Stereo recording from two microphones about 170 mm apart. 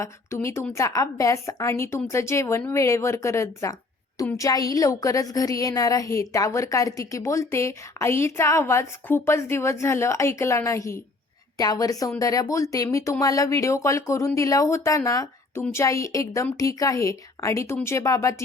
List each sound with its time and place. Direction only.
0.0 s a woman's voice: 15° left (ahead or behind)